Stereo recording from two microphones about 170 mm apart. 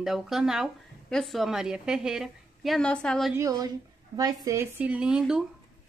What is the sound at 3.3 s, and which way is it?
A woman's voice, 20° right (ahead or behind).